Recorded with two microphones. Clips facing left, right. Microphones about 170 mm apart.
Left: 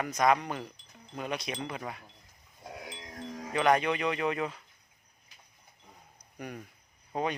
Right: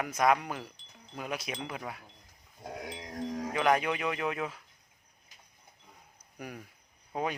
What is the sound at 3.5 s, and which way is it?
Speech, 5° right (ahead or behind).